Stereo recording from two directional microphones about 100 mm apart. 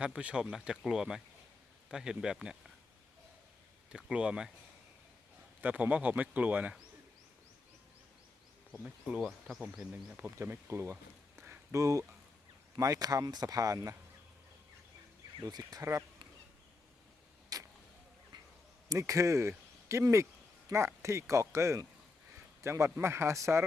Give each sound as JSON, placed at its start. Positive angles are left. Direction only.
{"t": 0.0, "sound": "speech", "side_deg": -10}
{"t": 3.9, "sound": "speech", "side_deg": -10}
{"t": 5.6, "sound": "speech", "side_deg": -15}
{"t": 8.8, "sound": "speech", "side_deg": -10}
{"t": 9.2, "sound": "speech", "side_deg": 0}
{"t": 9.9, "sound": "speech", "side_deg": -15}
{"t": 11.3, "sound": "a sound", "side_deg": -25}
{"t": 12.7, "sound": "speech", "side_deg": -35}
{"t": 15.4, "sound": "speech", "side_deg": -40}
{"t": 17.5, "sound": "vehicle", "side_deg": -35}
{"t": 18.9, "sound": "speech", "side_deg": -35}